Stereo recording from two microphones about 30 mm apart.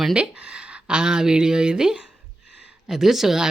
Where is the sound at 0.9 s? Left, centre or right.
Right.